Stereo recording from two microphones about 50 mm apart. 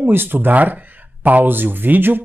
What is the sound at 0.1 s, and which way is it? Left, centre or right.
A woman's voice, right.